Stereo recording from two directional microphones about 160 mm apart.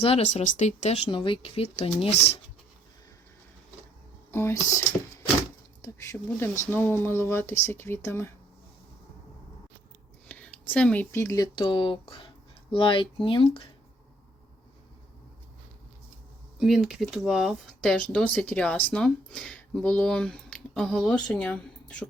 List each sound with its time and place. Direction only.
0.0 s speech: 45° left (ahead or behind)
4.3 s speech: 15° left (ahead or behind)
10.2 s whispering: 10° left (ahead or behind)
11.1 s speech: 20° left (ahead or behind)
11.6 s speech: 30° left (ahead or behind)
16.6 s speech: 5° right (ahead or behind)